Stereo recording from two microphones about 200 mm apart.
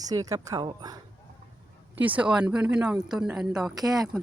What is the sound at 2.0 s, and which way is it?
Speech, 10° right (ahead or behind).